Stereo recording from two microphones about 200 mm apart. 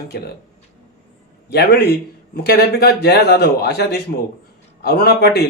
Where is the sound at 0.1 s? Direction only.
55° left (ahead or behind).